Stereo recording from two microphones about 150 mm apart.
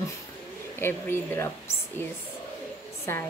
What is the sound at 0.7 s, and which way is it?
Speech, 15° left (ahead or behind).